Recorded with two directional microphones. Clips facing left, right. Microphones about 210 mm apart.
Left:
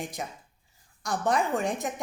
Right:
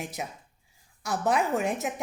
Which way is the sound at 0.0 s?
5° right (ahead or behind).